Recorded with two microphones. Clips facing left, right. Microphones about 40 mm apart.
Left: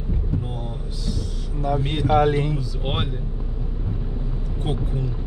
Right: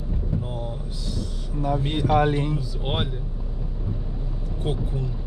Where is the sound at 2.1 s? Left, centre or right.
Left.